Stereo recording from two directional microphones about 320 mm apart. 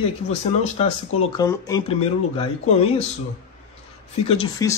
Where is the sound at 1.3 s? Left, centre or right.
Centre.